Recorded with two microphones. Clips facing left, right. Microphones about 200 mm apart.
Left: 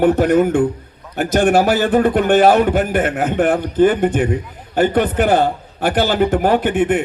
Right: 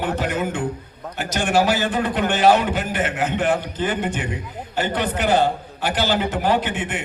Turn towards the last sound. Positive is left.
turn(degrees=55)  # may be behind; listen again after turning